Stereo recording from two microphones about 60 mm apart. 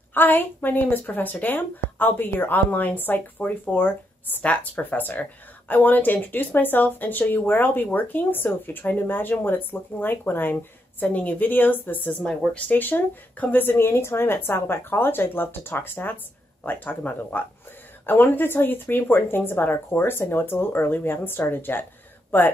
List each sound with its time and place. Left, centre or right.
0.1 s speech: left